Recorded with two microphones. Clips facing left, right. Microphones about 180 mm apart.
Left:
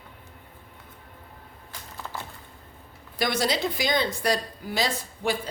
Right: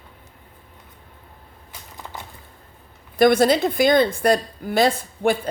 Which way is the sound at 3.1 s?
50° right (ahead or behind).